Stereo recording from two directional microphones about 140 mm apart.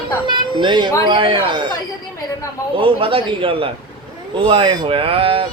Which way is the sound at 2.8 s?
40° right (ahead or behind).